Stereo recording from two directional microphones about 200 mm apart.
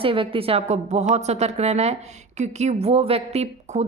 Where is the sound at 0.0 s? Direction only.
25° right (ahead or behind).